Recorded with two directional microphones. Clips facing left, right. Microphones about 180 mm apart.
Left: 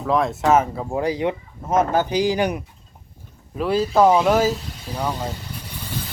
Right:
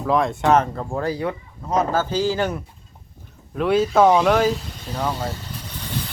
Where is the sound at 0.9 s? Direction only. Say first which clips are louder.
Left 3 dB; 15° left (ahead or behind).